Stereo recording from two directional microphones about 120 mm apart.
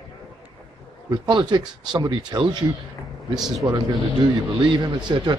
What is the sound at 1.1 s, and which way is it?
A man's voice, 40° right (ahead or behind).